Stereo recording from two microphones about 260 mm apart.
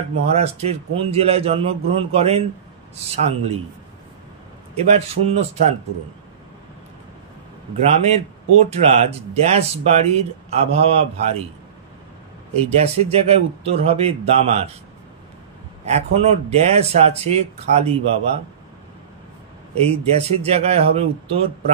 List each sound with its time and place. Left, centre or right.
0.3 s speech: right
4.7 s speech: right
7.8 s speech: right
12.5 s speech: right
15.8 s speech: right
19.8 s speech: right